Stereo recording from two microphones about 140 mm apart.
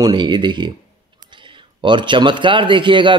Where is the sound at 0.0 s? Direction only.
30° right (ahead or behind).